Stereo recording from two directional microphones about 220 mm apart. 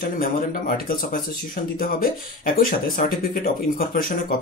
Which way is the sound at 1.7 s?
40° left (ahead or behind).